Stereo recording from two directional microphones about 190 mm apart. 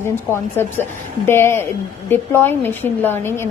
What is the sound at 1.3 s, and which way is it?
A woman's voice, 15° left (ahead or behind).